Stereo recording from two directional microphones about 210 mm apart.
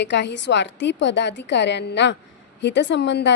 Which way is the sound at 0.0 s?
55° left (ahead or behind).